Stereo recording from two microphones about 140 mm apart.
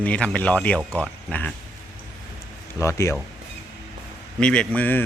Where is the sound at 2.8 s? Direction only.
20° left (ahead or behind).